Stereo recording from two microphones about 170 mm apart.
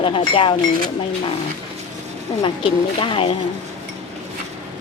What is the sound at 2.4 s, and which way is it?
Speech, 30° left (ahead or behind).